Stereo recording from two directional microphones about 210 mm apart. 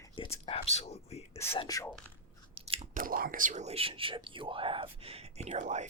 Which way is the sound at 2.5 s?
25° right (ahead or behind).